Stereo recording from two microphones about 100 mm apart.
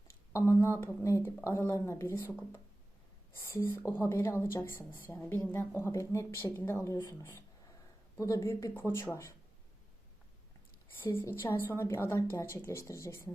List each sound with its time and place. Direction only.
0.1 s a woman's voice: 25° left (ahead or behind)
3.4 s a woman's voice: 30° left (ahead or behind)
11.1 s a woman's voice: 25° left (ahead or behind)